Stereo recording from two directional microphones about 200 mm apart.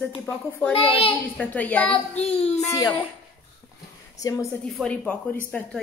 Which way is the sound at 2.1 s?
30° left (ahead or behind).